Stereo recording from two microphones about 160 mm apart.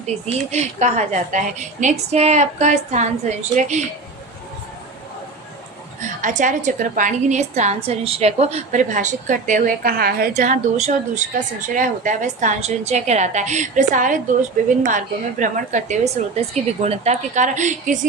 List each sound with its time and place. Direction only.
0.5 s a woman's voice: 45° right (ahead or behind)
6.0 s a woman's voice: 50° right (ahead or behind); by 10.2 s 75° right (ahead or behind)
10.3 s a woman's voice: 50° right (ahead or behind)